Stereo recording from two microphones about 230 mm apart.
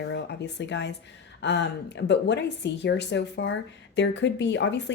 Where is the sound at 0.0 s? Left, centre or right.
Left.